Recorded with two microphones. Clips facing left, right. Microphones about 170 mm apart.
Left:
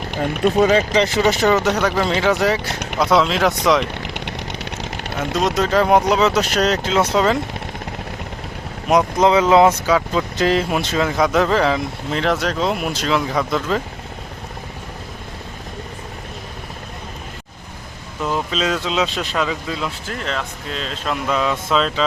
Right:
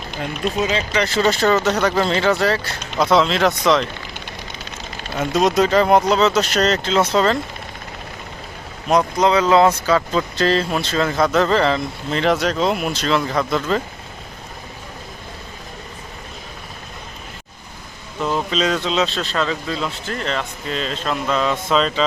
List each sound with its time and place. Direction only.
0.1 s speech: 50° left (ahead or behind)
0.9 s speech: 15° left (ahead or behind)
2.3 s speech: 15° left (ahead or behind)
3.0 s speech: 5° left (ahead or behind)
4.0 s vehicle: 70° left (ahead or behind)
5.5 s speech: centre (ahead or behind)
9.1 s speech: 20° left (ahead or behind); by 13.8 s 5° left (ahead or behind)
18.2 s speech: 5° left (ahead or behind)